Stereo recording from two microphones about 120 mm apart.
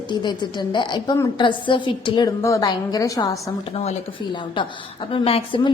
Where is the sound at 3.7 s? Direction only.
60° left (ahead or behind).